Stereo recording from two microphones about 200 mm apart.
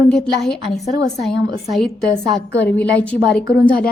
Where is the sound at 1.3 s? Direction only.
60° left (ahead or behind).